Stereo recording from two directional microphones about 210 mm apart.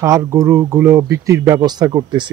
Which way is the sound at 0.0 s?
15° right (ahead or behind).